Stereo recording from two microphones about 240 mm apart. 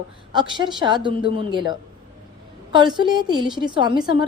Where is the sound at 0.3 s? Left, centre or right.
Centre.